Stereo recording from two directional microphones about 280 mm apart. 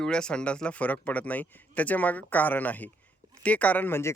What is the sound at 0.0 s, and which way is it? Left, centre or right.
Speech, centre.